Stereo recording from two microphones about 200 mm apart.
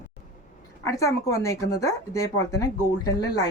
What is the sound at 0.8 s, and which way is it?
A woman's voice, 15° left (ahead or behind).